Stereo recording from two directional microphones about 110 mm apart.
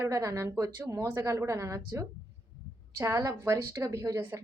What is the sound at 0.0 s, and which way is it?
A woman's voice, 30° right (ahead or behind).